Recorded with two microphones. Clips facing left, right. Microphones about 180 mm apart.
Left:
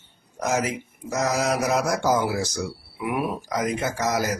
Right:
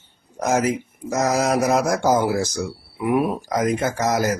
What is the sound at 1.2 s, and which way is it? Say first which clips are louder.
Speech: right 4 dB; 45° right (ahead or behind).